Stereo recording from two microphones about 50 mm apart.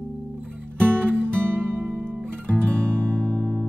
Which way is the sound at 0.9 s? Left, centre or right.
Right.